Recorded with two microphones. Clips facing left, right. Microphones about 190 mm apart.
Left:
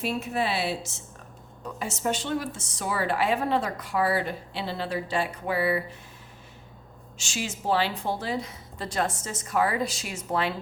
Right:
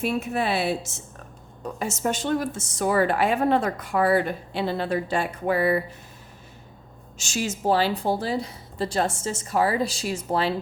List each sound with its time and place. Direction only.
0.0 s a woman's voice: 50° right (ahead or behind)
7.2 s a woman's voice: 45° right (ahead or behind)